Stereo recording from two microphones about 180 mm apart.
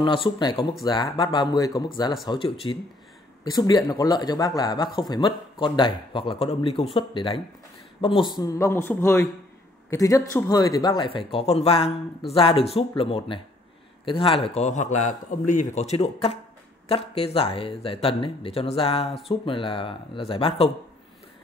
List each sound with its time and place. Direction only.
0.0 s a man's voice: 30° left (ahead or behind)